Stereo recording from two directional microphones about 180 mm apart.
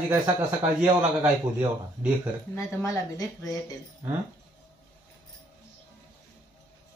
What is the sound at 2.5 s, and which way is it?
Speech, 15° left (ahead or behind).